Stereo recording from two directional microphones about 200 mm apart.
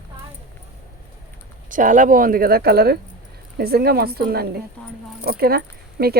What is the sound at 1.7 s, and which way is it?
Speech, 40° right (ahead or behind).